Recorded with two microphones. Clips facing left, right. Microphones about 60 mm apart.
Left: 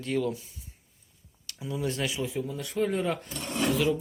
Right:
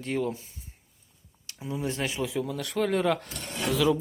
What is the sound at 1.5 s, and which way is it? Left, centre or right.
Speech, right.